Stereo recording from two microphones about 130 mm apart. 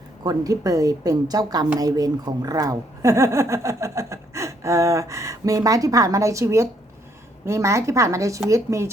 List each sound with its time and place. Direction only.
0.2 s speech: 30° right (ahead or behind)